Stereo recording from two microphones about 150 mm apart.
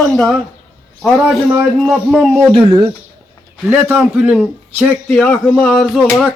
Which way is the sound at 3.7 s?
15° right (ahead or behind).